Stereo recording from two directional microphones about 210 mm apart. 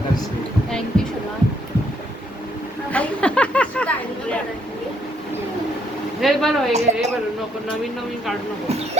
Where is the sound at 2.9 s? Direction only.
5° left (ahead or behind).